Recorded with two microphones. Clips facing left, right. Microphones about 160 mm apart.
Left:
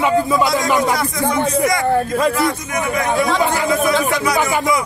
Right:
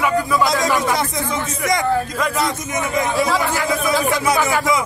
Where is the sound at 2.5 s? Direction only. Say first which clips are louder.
Left 2 dB; 20° right (ahead or behind).